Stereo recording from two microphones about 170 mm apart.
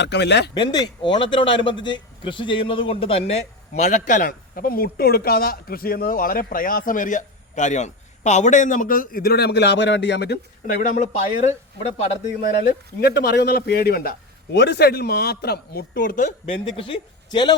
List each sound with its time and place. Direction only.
0.0 s speech: 90° left
0.5 s a man's voice: 25° left (ahead or behind); by 10.4 s 80° left
10.8 s a man's voice: 45° left (ahead or behind)
12.6 s a man's voice: 65° left (ahead or behind); by 16.6 s 50° left (ahead or behind)
16.7 s speech: 30° left (ahead or behind)